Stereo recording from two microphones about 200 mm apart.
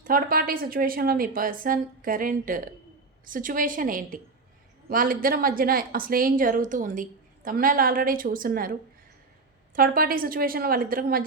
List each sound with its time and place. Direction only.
0.0 s a woman's voice: 45° right (ahead or behind)
9.7 s a woman's voice: 45° right (ahead or behind)